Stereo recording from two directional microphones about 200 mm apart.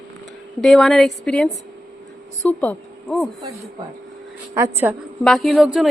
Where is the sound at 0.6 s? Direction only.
Centre (ahead or behind).